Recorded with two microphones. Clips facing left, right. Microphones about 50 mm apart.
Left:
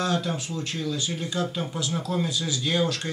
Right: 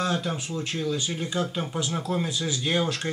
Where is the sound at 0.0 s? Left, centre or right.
Centre.